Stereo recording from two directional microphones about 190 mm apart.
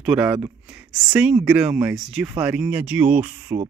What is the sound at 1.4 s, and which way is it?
Speech, 5° right (ahead or behind).